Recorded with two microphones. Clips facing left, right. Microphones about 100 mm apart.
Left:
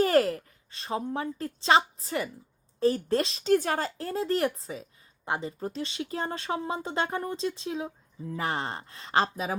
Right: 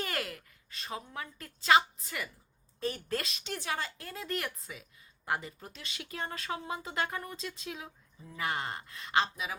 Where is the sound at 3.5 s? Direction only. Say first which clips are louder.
Left 12 dB; 45° left (ahead or behind).